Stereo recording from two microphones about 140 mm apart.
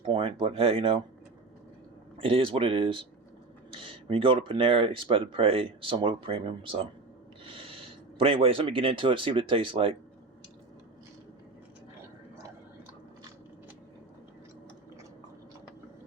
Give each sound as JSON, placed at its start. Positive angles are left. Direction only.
{"t": 0.0, "sound": "speech", "side_deg": -40}
{"t": 2.1, "sound": "speech", "side_deg": -40}
{"t": 7.4, "sound": "snort", "side_deg": -40}
{"t": 8.2, "sound": "speech", "side_deg": -40}